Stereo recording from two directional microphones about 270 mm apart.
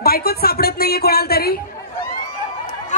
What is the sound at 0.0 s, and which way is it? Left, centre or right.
Speech, left.